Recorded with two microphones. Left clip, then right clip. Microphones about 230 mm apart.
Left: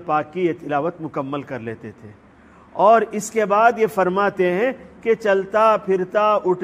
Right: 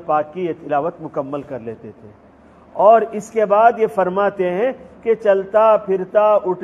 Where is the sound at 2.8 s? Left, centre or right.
Left.